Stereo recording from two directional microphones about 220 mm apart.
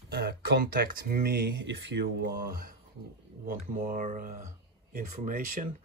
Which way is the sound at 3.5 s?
35° right (ahead or behind).